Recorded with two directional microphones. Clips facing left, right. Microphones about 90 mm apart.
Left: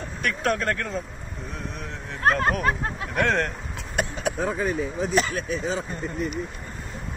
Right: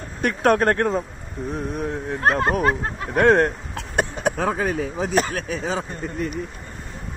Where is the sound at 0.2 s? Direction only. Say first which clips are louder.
Right 6 dB; 35° right (ahead or behind).